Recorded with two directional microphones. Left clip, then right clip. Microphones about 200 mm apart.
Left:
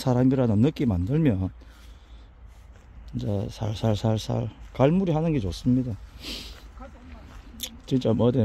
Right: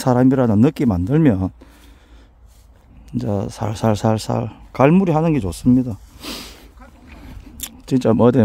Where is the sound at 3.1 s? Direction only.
35° right (ahead or behind).